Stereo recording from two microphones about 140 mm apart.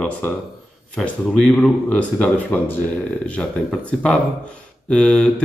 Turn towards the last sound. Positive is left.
turn(degrees=5)  # may be behind; listen again after turning